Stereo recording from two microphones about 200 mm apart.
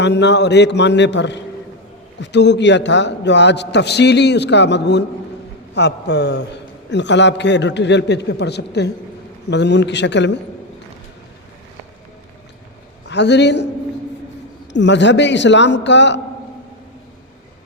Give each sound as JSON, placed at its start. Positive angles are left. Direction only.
{"t": 0.0, "sound": "a man's voice", "side_deg": 60}
{"t": 13.1, "sound": "a man's voice", "side_deg": 60}
{"t": 14.7, "sound": "a man's voice", "side_deg": 60}